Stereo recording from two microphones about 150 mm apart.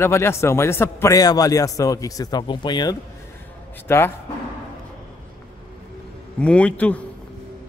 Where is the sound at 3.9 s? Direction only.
15° left (ahead or behind).